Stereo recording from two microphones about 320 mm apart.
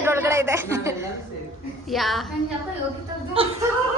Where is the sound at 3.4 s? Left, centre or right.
Centre.